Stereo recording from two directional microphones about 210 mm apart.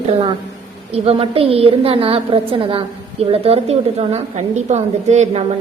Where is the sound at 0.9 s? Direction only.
30° right (ahead or behind).